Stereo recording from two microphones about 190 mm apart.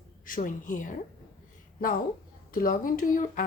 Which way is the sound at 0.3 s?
45° left (ahead or behind).